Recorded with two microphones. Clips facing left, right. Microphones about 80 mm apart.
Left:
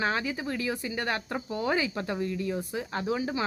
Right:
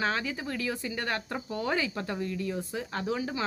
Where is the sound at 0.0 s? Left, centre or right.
Centre.